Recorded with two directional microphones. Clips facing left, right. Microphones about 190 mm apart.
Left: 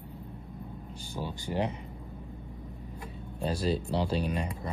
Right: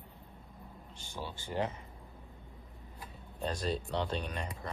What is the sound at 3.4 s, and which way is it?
Speech, 5° left (ahead or behind).